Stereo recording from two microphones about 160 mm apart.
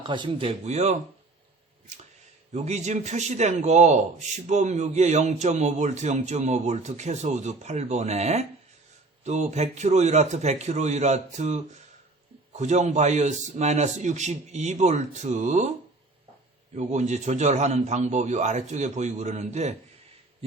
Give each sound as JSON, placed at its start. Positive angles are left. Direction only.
{"t": 0.0, "sound": "speech", "side_deg": -30}
{"t": 2.5, "sound": "a man's voice", "side_deg": -45}
{"t": 16.7, "sound": "a man's voice", "side_deg": -45}